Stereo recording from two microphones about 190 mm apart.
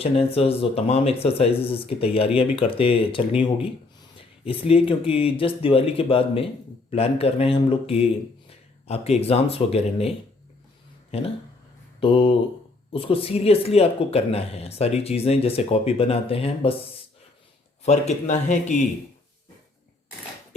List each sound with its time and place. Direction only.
0.0 s speech: 30° left (ahead or behind)
4.4 s speech: 30° left (ahead or behind)
11.9 s speech: 30° left (ahead or behind)
17.8 s speech: 40° left (ahead or behind)